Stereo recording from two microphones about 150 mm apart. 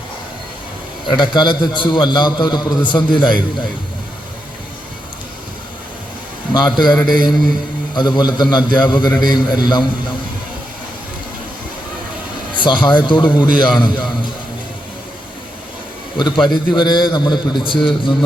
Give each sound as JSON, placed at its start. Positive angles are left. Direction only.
{"t": 1.0, "sound": "a man's voice", "side_deg": 30}
{"t": 6.5, "sound": "a man's voice", "side_deg": 30}
{"t": 12.5, "sound": "a man's voice", "side_deg": 30}
{"t": 16.1, "sound": "a man's voice", "side_deg": 30}